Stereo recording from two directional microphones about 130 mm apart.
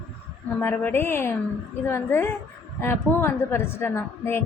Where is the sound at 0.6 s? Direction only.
15° left (ahead or behind).